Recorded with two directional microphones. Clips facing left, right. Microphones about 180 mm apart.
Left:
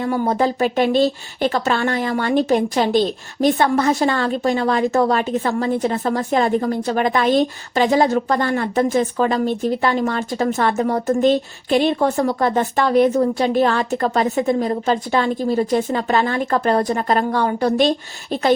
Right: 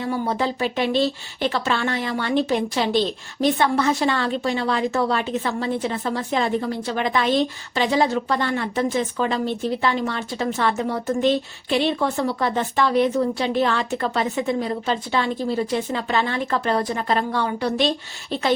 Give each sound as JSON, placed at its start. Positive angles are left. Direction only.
{"t": 0.0, "sound": "speech", "side_deg": 45}